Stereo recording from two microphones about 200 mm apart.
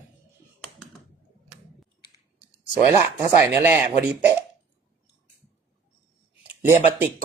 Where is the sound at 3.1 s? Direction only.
15° right (ahead or behind).